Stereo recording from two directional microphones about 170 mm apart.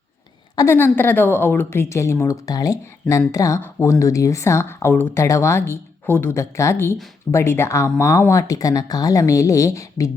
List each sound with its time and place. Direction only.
0.5 s speech: 15° left (ahead or behind)